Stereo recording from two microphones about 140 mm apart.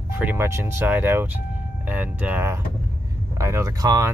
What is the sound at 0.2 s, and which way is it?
Speech, 15° right (ahead or behind).